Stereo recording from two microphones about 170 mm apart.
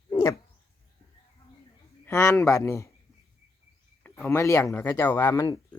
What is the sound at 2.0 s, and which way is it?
Speech, 15° left (ahead or behind).